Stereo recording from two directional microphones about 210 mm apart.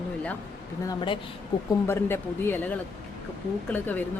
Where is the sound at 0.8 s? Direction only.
25° left (ahead or behind).